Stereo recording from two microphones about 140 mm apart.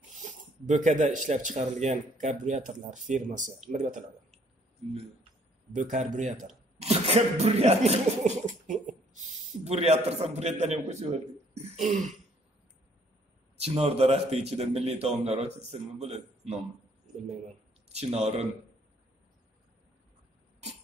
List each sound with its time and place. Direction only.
0.7 s a man's voice: 60° right (ahead or behind)
5.8 s a man's voice: 60° right (ahead or behind)
6.4 s a sound: 50° right (ahead or behind)
9.7 s a man's voice: 50° right (ahead or behind)
11.5 s throat clearing: 50° right (ahead or behind)
13.6 s a man's voice: 45° right (ahead or behind)
17.9 s a man's voice: 50° right (ahead or behind)